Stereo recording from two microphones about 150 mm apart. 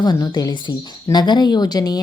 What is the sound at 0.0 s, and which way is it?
Speech, 30° left (ahead or behind).